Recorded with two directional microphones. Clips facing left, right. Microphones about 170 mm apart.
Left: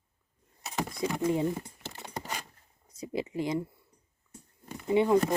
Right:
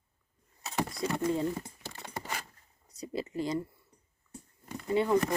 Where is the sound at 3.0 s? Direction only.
15° left (ahead or behind).